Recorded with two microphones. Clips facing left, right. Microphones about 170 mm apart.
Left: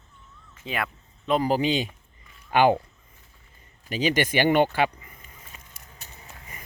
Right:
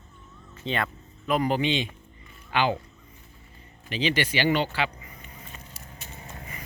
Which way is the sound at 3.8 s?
45° left (ahead or behind).